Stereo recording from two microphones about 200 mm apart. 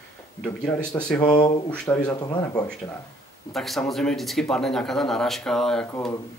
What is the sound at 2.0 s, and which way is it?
Speech, 20° left (ahead or behind).